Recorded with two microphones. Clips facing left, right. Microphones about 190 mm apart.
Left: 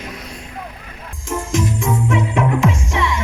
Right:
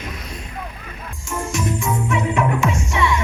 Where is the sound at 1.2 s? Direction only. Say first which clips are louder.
Left 4 dB; 90° left.